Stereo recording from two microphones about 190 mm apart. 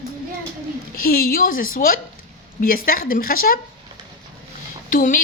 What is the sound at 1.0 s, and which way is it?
A woman's voice, 50° left (ahead or behind).